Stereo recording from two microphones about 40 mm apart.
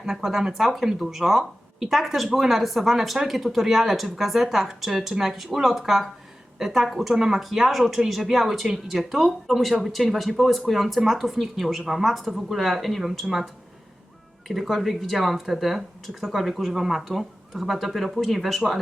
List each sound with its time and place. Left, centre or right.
0.0 s speech: centre
7.1 s speech: centre
13.2 s speech: centre
14.4 s speech: centre